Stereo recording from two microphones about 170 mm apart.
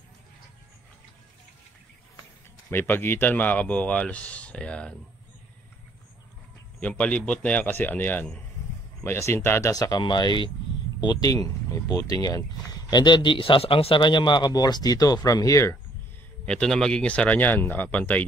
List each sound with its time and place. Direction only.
2.7 s speech: 10° left (ahead or behind)
6.8 s speech: 5° left (ahead or behind)
16.4 s speech: 5° left (ahead or behind)